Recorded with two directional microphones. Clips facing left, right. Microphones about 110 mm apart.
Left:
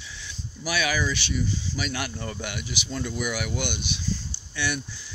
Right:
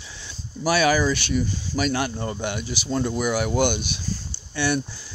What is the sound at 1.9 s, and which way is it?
Speech, 30° right (ahead or behind).